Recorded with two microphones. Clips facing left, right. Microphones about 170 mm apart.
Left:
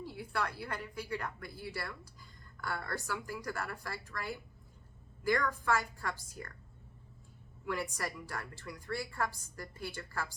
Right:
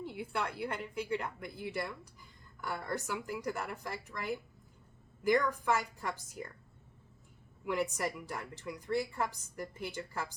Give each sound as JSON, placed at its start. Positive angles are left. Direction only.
{"t": 0.0, "sound": "a woman's voice", "side_deg": -20}
{"t": 7.6, "sound": "a woman's voice", "side_deg": -20}